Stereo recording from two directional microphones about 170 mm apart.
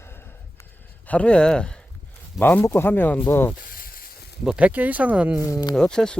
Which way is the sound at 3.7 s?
55° left (ahead or behind).